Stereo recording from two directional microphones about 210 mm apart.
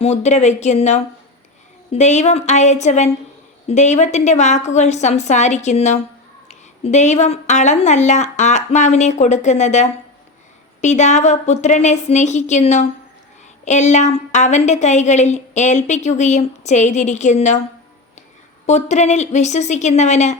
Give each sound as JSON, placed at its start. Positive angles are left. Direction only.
{"t": 0.0, "sound": "a woman's voice", "side_deg": 30}
{"t": 18.6, "sound": "a woman's voice", "side_deg": 35}